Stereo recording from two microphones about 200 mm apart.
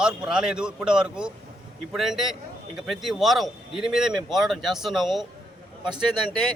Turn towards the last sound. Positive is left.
turn(degrees=-20)  # may be behind; listen again after turning